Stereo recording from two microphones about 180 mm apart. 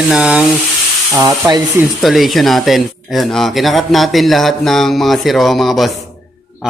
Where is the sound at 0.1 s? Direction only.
5° right (ahead or behind).